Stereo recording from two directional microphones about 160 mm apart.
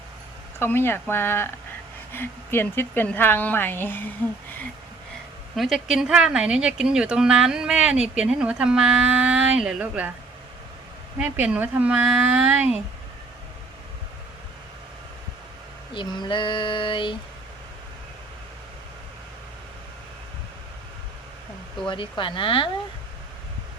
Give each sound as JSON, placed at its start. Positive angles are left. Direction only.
{"t": 0.6, "sound": "a woman's voice", "side_deg": 15}
{"t": 5.5, "sound": "speech", "side_deg": 0}
{"t": 11.2, "sound": "speech", "side_deg": -10}
{"t": 15.9, "sound": "female singing", "side_deg": 30}
{"t": 21.8, "sound": "female singing", "side_deg": 30}